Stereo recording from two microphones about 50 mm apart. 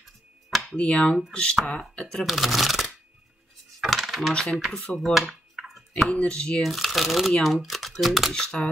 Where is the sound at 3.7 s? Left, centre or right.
Centre.